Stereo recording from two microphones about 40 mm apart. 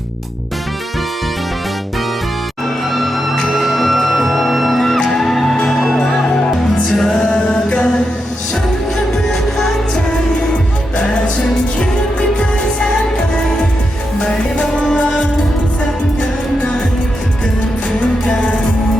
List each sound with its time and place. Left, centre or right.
3.4 s music: centre
4.9 s music: centre
6.9 s music: centre
7.2 s music: left
10.9 s music: left
14.3 s music: centre